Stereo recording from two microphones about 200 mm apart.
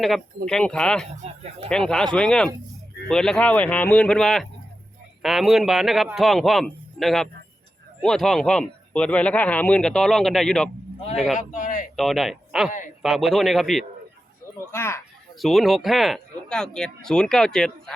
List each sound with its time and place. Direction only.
0.4 s speech: 5° left (ahead or behind)
1.2 s a sound: 30° right (ahead or behind)
1.7 s speech: 5° left (ahead or behind)
11.3 s a sound: 40° left (ahead or behind)
11.9 s speech: centre (ahead or behind)
14.6 s speech: 10° left (ahead or behind)
15.4 s speech: centre (ahead or behind)